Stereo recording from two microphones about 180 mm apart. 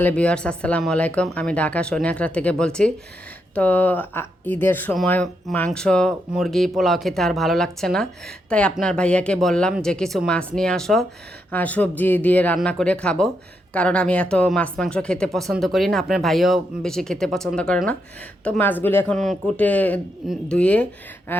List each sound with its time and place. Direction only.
0.0 s speech: 5° left (ahead or behind)